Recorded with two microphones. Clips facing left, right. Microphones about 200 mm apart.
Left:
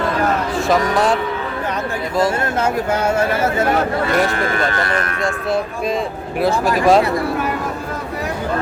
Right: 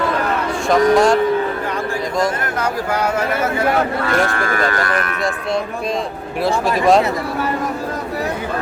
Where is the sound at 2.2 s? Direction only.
25° left (ahead or behind).